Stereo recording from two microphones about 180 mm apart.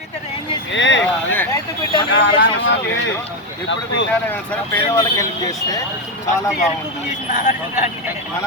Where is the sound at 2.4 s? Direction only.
90° left.